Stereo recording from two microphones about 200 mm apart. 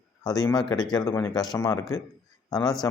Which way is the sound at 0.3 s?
20° left (ahead or behind).